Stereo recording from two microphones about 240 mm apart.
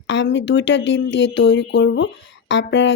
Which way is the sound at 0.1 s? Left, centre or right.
Left.